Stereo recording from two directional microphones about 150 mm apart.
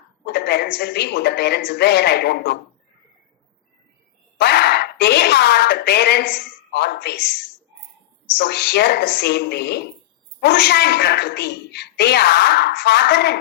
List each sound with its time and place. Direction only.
0.3 s a woman's voice: 90° left
4.4 s a sound: 90° left
8.4 s a woman's voice: 90° left